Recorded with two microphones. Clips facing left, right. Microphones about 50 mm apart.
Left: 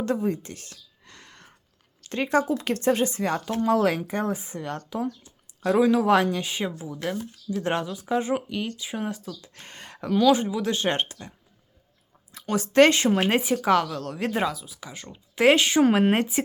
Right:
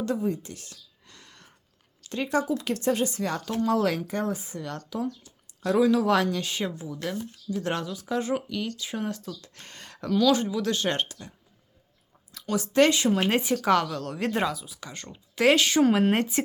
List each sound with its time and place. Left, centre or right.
0.0 s a sound: left
2.0 s speech: left
8.9 s speech: centre; by 11.3 s left
12.3 s a sound: left
12.5 s speech: left
13.1 s speech: left
13.4 s speech: centre
15.4 s speech: left
15.8 s speech: left
16.1 s speech: centre